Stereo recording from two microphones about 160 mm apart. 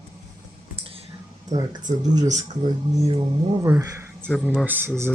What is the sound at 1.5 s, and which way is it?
Speech, 25° right (ahead or behind).